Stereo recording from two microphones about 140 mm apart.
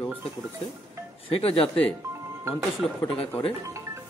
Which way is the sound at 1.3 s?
45° left (ahead or behind).